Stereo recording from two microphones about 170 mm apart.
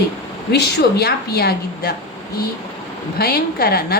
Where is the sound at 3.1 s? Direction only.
65° left (ahead or behind).